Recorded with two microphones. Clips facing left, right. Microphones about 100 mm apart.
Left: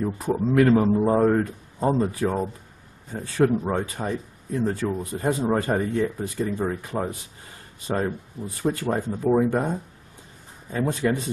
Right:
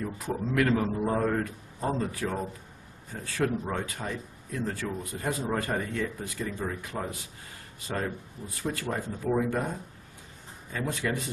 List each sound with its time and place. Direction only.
0.0 s speech: 25° left (ahead or behind)
8.7 s speech: 25° left (ahead or behind)